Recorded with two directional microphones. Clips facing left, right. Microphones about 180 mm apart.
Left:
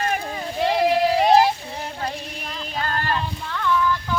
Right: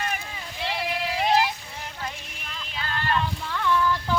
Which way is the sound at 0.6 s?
40° left (ahead or behind).